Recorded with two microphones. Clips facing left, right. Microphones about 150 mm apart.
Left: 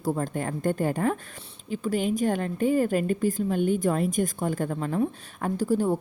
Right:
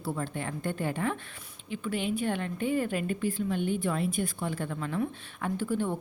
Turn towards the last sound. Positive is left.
turn(degrees=40)  # may be behind; listen again after turning